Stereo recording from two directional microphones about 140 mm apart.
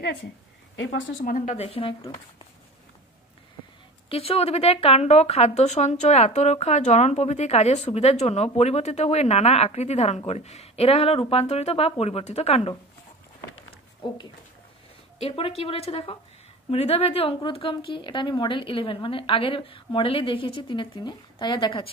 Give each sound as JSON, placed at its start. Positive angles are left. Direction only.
{"t": 1.2, "sound": "speech", "side_deg": 65}
{"t": 4.1, "sound": "speech", "side_deg": 40}
{"t": 13.7, "sound": "a sound", "side_deg": 35}
{"t": 15.1, "sound": "speech", "side_deg": 45}